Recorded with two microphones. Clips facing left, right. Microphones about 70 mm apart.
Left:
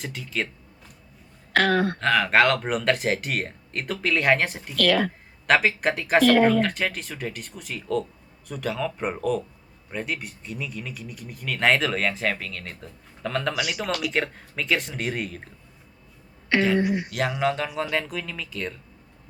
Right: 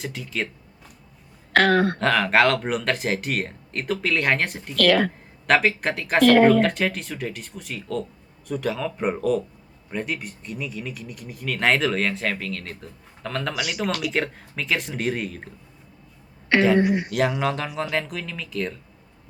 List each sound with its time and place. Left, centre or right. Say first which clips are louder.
0.0 s speech: right 1 dB; centre
1.5 s speech: right 3 dB; right
2.0 s speech: right 1 dB; centre
4.8 s speech: right 3 dB; right
5.5 s speech: right 1 dB; centre
6.2 s speech: right 4 dB; right
6.6 s speech: right 3 dB; centre
16.7 s speech: right 3 dB; right
17.1 s speech: right 2 dB; centre